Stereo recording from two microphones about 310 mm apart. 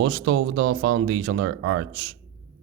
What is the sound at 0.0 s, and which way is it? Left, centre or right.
Speech, right.